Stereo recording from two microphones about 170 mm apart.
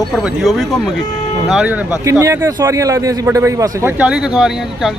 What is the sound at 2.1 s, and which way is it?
A man's voice, 15° right (ahead or behind).